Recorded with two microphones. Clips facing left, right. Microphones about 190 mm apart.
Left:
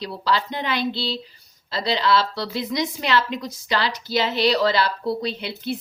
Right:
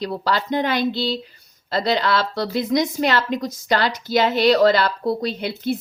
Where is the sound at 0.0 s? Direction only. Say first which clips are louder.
Right 1 dB; 50° right (ahead or behind).